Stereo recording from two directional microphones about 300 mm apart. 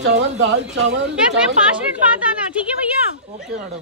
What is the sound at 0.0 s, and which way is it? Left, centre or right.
Speech, right.